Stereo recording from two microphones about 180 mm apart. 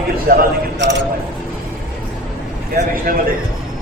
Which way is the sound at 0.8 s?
85° right.